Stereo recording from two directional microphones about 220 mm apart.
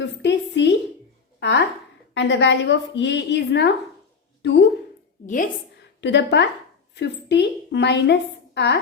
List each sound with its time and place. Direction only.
0.0 s a sound: 55° left (ahead or behind)
2.1 s speech: 55° left (ahead or behind)
5.2 s a woman's voice: 35° left (ahead or behind)
6.0 s a woman's voice: 50° left (ahead or behind)